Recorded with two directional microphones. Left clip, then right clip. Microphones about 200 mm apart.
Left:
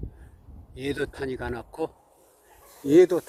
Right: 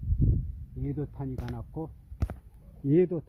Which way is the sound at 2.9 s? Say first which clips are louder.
Left 8 dB; 5° right (ahead or behind).